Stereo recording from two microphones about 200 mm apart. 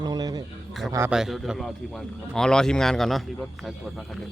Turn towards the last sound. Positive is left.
turn(degrees=0)  # may be behind; listen again after turning